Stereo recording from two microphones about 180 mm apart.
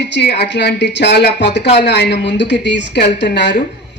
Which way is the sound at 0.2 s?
70° left (ahead or behind).